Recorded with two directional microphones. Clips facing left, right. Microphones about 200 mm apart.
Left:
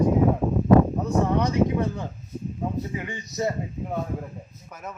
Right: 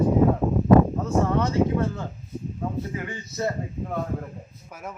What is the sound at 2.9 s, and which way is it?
A man's voice, 20° left (ahead or behind).